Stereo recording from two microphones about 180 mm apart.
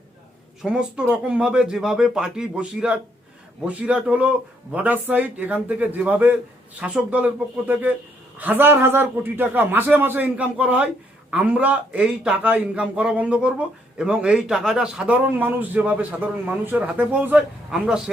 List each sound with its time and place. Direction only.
0.6 s a man's voice: 5° right (ahead or behind)